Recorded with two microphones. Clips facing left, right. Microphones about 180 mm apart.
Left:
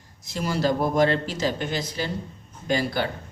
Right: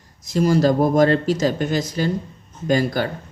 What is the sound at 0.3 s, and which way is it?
Speech, 45° right (ahead or behind).